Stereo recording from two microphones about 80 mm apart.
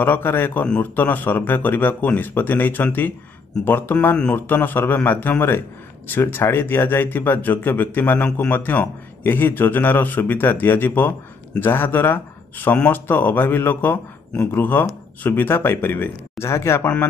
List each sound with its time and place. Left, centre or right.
0.0 s a man's voice: left
16.8 s a man's voice: left